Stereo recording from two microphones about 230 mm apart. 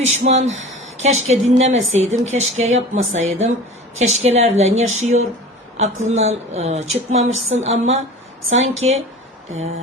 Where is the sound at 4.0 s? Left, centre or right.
Right.